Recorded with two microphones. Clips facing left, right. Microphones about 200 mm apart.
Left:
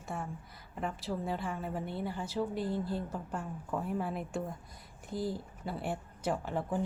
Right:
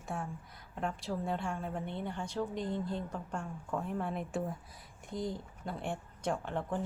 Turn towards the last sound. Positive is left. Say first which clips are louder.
# left 1 dB
turn(degrees=5)  # may be behind; listen again after turning